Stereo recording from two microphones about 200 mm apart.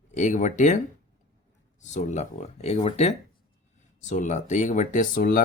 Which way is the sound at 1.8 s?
35° left (ahead or behind).